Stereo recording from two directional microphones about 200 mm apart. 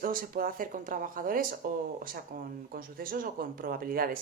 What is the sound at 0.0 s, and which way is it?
Speech, 45° right (ahead or behind).